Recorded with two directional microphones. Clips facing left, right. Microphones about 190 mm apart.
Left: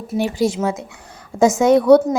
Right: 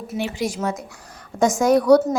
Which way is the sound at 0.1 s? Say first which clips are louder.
Left 7 dB; 30° left (ahead or behind).